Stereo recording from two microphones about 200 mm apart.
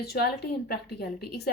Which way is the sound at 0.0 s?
55° left (ahead or behind).